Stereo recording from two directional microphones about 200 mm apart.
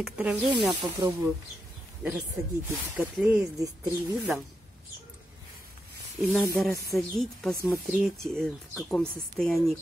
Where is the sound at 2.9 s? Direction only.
5° right (ahead or behind).